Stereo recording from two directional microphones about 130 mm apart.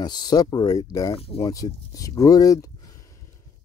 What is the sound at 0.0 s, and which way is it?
Speech, 35° left (ahead or behind).